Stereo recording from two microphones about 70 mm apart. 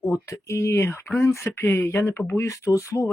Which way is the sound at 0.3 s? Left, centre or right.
Left.